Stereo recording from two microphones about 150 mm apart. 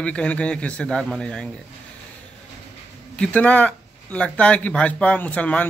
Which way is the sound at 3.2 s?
10° left (ahead or behind).